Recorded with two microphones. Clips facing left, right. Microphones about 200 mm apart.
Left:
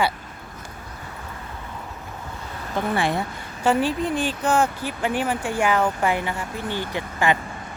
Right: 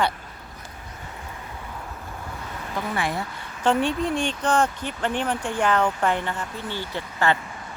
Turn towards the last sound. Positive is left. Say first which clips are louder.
# left 1 dB
turn(degrees=15)  # may be behind; listen again after turning